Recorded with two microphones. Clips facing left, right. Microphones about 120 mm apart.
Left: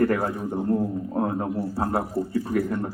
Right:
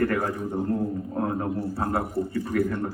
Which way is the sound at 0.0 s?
30° left (ahead or behind).